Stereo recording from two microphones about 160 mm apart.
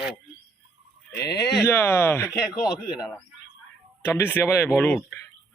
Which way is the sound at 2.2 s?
5° right (ahead or behind).